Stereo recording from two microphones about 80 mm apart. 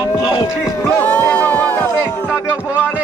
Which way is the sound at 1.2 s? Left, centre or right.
Left.